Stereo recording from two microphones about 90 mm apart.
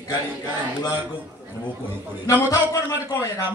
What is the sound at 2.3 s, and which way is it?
A man's voice, 35° left (ahead or behind).